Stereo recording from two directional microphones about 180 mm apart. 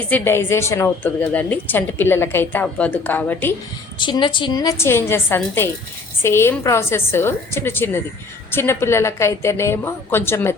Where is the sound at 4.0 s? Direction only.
25° left (ahead or behind).